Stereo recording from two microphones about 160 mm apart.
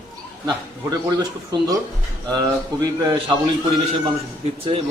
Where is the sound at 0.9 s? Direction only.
25° right (ahead or behind).